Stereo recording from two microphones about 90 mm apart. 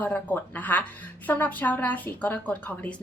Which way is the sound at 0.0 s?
20° left (ahead or behind).